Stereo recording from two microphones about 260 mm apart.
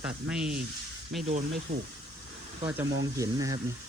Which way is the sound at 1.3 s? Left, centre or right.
Right.